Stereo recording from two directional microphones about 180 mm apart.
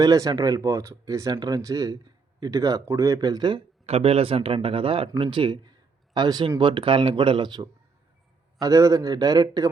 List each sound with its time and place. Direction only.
0.0 s speech: 20° right (ahead or behind)